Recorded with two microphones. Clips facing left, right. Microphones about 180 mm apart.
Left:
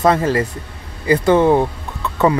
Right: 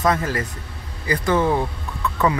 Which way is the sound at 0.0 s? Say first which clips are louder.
Left 6 dB; 30° left (ahead or behind).